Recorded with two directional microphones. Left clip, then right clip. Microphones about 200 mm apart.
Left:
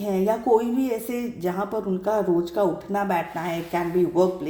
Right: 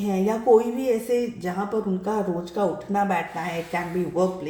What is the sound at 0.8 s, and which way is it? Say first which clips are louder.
Speech: right 4 dB; 40° left (ahead or behind).